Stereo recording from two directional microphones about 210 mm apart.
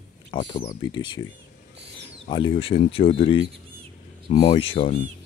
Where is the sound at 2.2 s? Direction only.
25° left (ahead or behind).